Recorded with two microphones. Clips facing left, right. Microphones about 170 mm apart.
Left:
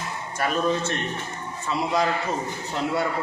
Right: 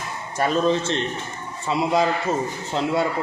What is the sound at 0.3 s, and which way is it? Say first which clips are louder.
Speech: right 4 dB; 25° right (ahead or behind).